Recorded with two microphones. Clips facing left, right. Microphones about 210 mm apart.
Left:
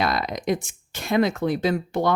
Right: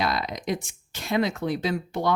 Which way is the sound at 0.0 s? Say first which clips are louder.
Left 3 dB; 55° left (ahead or behind).